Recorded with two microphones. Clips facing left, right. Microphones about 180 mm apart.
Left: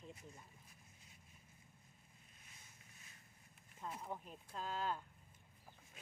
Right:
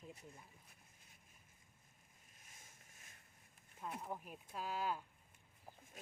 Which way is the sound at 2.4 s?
45° right (ahead or behind).